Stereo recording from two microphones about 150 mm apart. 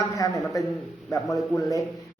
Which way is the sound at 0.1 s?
20° left (ahead or behind).